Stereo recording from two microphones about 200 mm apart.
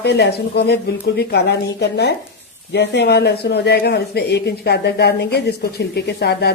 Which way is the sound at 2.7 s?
55° left (ahead or behind).